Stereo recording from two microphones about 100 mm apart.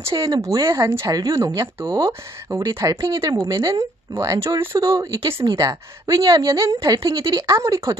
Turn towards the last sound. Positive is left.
turn(degrees=-35)  # may be behind; listen again after turning